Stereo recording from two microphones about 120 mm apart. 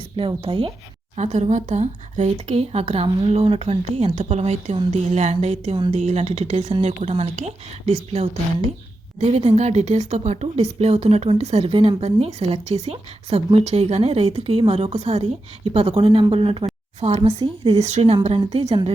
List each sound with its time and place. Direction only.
0.2 s a woman's voice: 45° right (ahead or behind)
1.1 s speech: 70° right (ahead or behind)
4.9 s a sound: 70° right (ahead or behind)
6.8 s a woman's voice: 60° right (ahead or behind)
17.0 s speech: 60° right (ahead or behind)
17.4 s a woman's voice: 45° right (ahead or behind)
17.7 s speech: 65° right (ahead or behind)
18.6 s speech: 35° right (ahead or behind)